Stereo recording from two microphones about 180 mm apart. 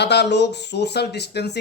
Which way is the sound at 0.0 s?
70° left (ahead or behind).